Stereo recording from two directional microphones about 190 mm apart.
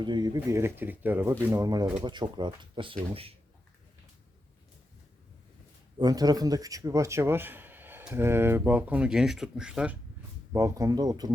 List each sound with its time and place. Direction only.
0.0 s speech: 25° right (ahead or behind)
6.0 s a man's voice: 20° right (ahead or behind); by 10.0 s 5° right (ahead or behind)
10.5 s speech: 15° right (ahead or behind)